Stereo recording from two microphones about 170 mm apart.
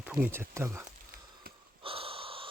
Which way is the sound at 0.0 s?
10° right (ahead or behind).